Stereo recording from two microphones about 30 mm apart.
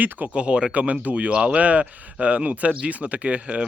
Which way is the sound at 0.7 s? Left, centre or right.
Right.